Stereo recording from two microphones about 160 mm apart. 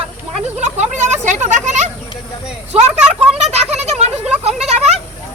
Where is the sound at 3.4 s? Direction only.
45° right (ahead or behind).